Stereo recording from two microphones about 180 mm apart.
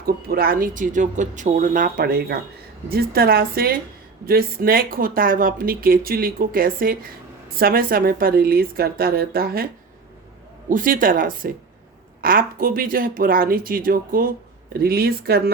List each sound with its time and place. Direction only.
0.0 s a woman's voice: 55° right (ahead or behind)
10.7 s a woman's voice: 50° right (ahead or behind)